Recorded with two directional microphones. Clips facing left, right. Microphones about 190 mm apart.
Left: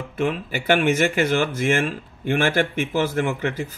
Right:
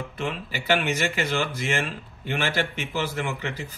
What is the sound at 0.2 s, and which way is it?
Speech, 50° left (ahead or behind).